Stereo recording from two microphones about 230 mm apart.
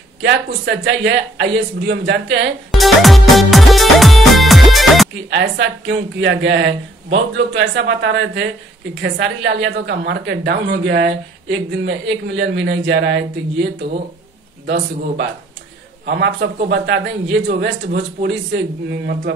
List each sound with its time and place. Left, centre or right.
0.2 s a woman's voice: right
2.7 s music: centre
5.3 s a woman's voice: right
16.1 s a woman's voice: right